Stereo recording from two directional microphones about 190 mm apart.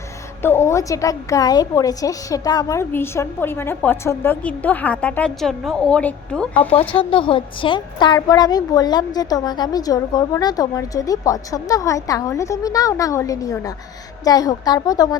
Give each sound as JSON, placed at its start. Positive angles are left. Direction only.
{"t": 0.4, "sound": "a woman's voice", "side_deg": 15}
{"t": 6.7, "sound": "a woman's voice", "side_deg": 30}